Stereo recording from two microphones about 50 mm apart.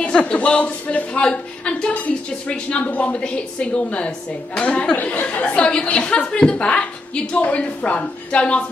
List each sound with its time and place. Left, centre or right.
0.0 s a woman's voice: left
4.9 s speech: left
5.4 s a woman's voice: left